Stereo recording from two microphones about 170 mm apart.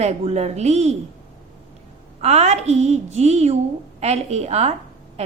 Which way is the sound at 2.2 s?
40° right (ahead or behind).